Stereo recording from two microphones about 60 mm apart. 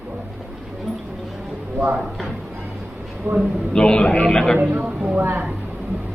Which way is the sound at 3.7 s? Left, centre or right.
Centre.